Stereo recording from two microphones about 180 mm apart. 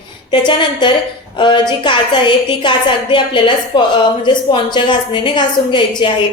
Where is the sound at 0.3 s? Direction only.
25° left (ahead or behind).